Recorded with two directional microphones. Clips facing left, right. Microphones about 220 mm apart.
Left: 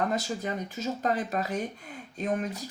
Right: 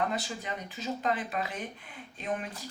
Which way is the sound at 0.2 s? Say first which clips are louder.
Left 5 dB; 45° left (ahead or behind).